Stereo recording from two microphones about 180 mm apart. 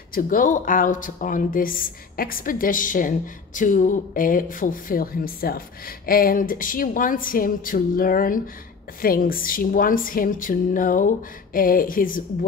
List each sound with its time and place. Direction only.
0.1 s speech: 50° left (ahead or behind)